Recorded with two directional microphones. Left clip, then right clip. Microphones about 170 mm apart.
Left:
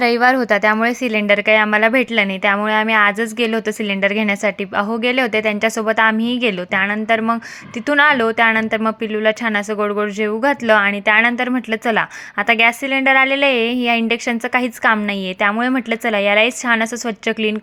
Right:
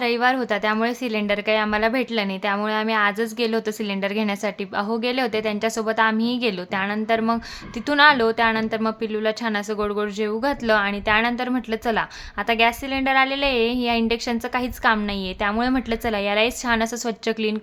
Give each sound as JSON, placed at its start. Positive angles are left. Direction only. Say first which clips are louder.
{"t": 0.0, "sound": "a woman's voice", "louder": "left 6 dB", "side_deg": 30}
{"t": 6.1, "sound": "a woman's voice", "louder": "left 4 dB", "side_deg": 60}
{"t": 6.4, "sound": "a woman's voice", "louder": "left 7 dB", "side_deg": 20}